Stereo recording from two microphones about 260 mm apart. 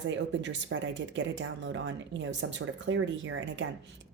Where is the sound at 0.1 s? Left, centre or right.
Right.